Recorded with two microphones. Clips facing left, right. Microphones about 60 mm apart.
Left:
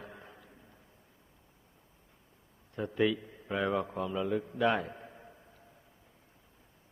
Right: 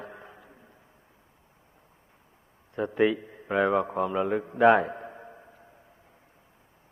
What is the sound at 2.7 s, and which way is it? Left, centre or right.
A man's voice, right.